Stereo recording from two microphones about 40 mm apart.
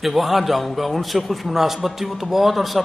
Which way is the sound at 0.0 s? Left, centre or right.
Centre.